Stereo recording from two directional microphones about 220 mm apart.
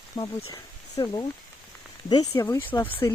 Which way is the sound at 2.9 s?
20° left (ahead or behind).